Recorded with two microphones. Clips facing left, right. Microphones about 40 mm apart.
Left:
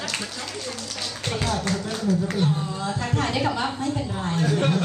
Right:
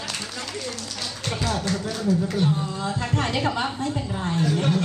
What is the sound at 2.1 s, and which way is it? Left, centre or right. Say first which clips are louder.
Speech: right 1 dB; left.